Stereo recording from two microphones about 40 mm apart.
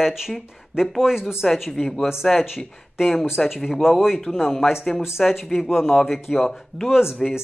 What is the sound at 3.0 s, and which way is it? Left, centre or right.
Speech, centre.